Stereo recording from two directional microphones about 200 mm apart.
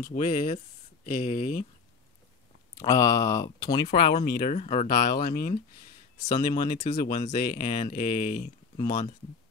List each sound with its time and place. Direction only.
0.0 s speech: 40° left (ahead or behind)
2.7 s speech: 15° left (ahead or behind)
3.9 s speech: 50° left (ahead or behind)
6.3 s speech: 20° left (ahead or behind)
6.8 s speech: 35° left (ahead or behind)